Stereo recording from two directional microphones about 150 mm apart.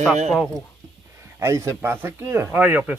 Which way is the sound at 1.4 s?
20° right (ahead or behind).